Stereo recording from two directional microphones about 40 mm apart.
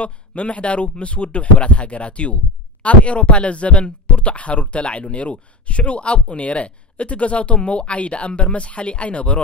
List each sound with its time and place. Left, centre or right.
0.0 s speech: left